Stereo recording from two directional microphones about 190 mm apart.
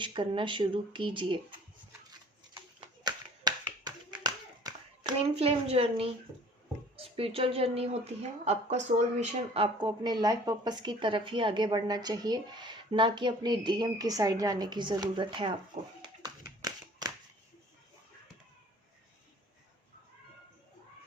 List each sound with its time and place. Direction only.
0.0 s a woman's voice: 25° right (ahead or behind)
3.0 s clapping: 20° right (ahead or behind)
5.4 s speech: 30° right (ahead or behind)
9.8 s a woman's voice: 20° right (ahead or behind)
16.2 s clapping: 20° right (ahead or behind)